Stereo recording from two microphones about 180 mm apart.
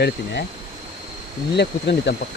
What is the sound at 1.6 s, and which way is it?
Speech, 70° left (ahead or behind).